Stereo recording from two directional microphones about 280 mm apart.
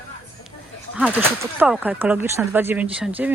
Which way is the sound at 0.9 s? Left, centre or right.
Centre.